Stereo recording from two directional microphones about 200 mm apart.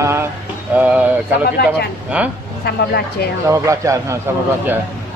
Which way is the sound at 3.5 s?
15° right (ahead or behind).